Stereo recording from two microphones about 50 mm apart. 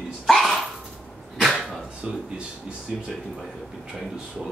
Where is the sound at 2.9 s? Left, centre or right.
Centre.